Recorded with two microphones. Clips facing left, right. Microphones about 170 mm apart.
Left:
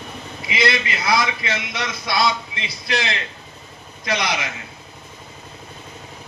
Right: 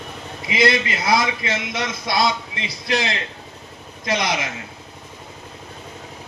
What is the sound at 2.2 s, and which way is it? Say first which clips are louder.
Speech: even; 45° right (ahead or behind).